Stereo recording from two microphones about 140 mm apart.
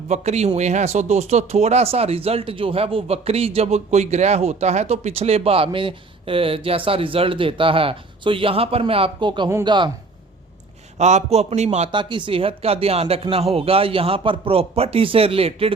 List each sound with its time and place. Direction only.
0.1 s a man's voice: 50° right (ahead or behind); by 9.9 s 35° right (ahead or behind)
10.9 s a man's voice: 55° right (ahead or behind)
11.9 s a man's voice: 35° right (ahead or behind)